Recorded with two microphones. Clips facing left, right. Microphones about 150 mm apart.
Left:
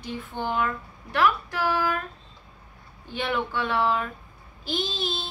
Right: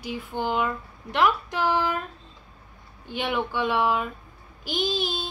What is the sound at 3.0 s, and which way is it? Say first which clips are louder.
Speech: right 1 dB; 15° right (ahead or behind).